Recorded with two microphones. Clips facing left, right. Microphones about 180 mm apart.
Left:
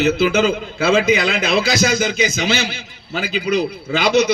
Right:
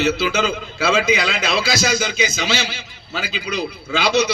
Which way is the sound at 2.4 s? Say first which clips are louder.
Left 3 dB; 55° left (ahead or behind).